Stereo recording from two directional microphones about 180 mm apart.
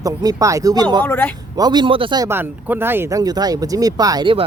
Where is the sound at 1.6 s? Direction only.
25° right (ahead or behind).